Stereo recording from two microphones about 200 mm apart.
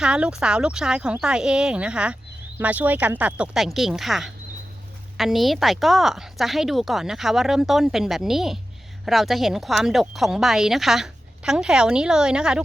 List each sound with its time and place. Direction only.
0.0 s speech: 5° right (ahead or behind)